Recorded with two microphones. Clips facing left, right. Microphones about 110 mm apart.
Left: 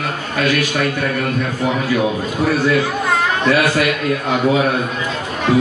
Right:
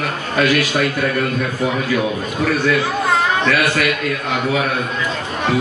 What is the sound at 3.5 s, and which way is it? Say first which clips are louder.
A man's voice: left 2 dB; 25° left (ahead or behind).